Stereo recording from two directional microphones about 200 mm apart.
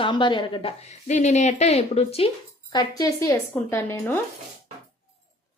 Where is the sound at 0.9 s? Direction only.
35° left (ahead or behind).